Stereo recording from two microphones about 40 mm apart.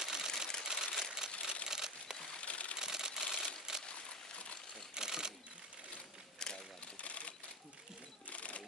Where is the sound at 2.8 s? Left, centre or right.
Centre.